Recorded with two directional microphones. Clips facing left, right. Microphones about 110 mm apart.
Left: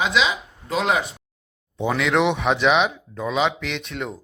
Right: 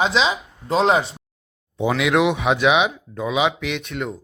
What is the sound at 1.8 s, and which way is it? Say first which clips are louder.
Speech: right 2 dB; 10° right (ahead or behind).